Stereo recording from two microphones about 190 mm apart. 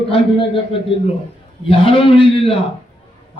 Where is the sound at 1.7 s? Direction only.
30° left (ahead or behind).